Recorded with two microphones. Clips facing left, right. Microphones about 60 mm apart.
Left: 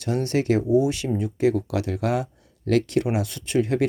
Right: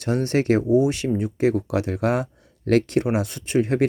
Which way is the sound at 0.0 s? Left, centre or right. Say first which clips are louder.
Right 2 dB; right.